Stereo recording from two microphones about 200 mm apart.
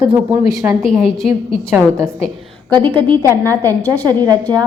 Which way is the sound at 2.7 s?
20° right (ahead or behind).